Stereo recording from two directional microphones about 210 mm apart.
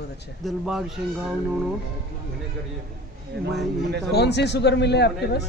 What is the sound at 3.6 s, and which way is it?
Speech, 55° right (ahead or behind).